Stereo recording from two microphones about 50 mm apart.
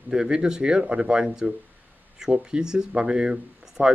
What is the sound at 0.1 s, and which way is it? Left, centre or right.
Speech, centre.